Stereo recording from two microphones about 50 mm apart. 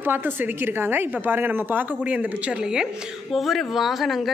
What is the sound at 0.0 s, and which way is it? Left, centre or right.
Speech, right.